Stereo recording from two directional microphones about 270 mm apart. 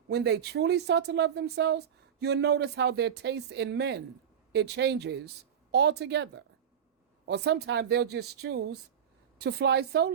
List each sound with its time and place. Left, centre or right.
0.1 s speech: right